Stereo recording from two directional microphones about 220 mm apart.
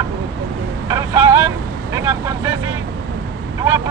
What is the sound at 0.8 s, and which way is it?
Vehicle, 15° right (ahead or behind).